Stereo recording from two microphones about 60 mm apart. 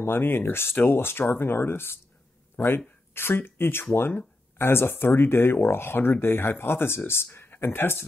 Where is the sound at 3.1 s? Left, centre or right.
Left.